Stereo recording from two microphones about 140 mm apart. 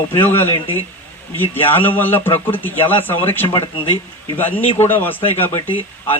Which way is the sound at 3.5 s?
35° left (ahead or behind).